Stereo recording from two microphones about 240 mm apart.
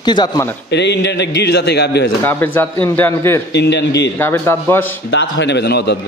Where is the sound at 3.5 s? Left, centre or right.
Left.